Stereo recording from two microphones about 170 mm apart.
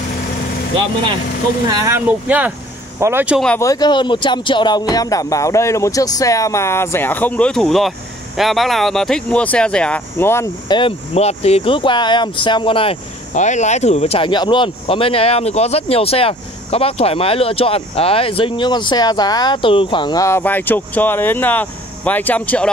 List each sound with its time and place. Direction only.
1.7 s speech: 20° right (ahead or behind)
3.5 s speech: 20° left (ahead or behind)
10.7 s speech: 30° left (ahead or behind)
13.3 s speech: 45° left (ahead or behind); by 22.7 s 10° left (ahead or behind)